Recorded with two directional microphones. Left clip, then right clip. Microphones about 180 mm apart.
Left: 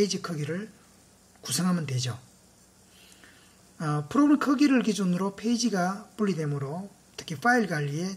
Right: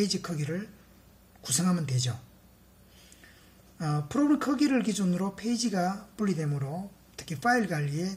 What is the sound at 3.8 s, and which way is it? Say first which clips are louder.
Speech: left 4 dB; 25° left (ahead or behind).